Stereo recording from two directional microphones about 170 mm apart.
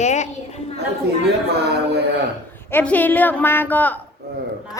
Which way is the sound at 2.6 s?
10° left (ahead or behind).